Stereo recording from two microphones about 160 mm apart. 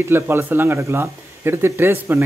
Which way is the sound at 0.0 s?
15° right (ahead or behind).